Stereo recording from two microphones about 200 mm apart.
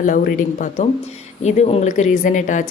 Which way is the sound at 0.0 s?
40° left (ahead or behind).